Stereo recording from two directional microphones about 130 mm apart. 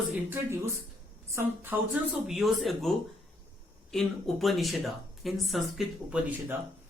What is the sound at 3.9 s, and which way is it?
Speech, centre (ahead or behind).